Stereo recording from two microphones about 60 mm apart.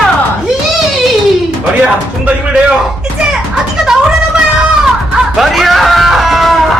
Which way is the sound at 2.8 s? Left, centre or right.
Centre.